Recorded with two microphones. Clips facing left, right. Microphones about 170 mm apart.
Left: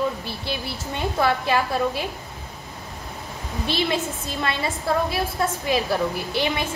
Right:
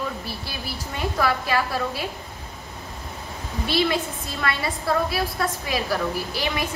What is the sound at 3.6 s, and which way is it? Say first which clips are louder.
A woman's voice: right 1 dB; 25° left (ahead or behind).